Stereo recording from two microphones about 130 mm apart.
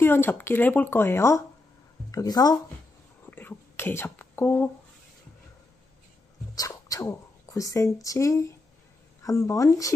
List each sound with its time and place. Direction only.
0.0 s speech: 15° left (ahead or behind)
3.3 s whispering: 15° left (ahead or behind)
6.5 s speech: 25° left (ahead or behind)